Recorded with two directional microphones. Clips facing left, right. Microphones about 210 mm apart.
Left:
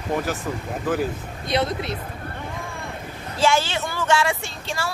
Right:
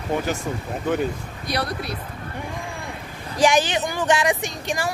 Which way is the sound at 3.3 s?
15° right (ahead or behind).